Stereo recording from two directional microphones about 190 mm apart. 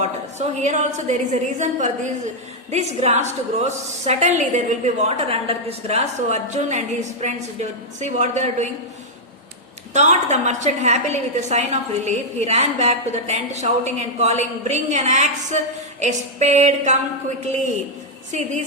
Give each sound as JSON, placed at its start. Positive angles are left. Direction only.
{"t": 0.0, "sound": "a woman's voice", "side_deg": -35}
{"t": 9.9, "sound": "a woman's voice", "side_deg": -35}